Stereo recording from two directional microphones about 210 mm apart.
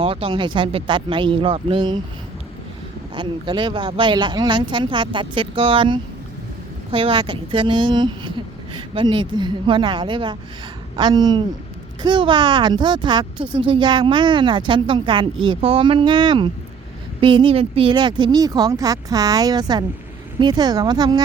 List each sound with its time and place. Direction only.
0.0 s speech: 25° right (ahead or behind)
3.2 s speech: 25° right (ahead or behind)